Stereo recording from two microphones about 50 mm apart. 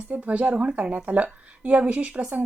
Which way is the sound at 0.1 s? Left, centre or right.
Right.